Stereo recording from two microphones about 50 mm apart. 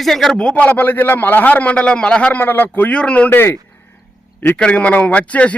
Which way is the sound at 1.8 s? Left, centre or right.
Left.